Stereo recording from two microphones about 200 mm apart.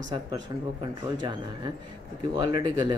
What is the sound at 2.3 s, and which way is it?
Speech, 20° right (ahead or behind).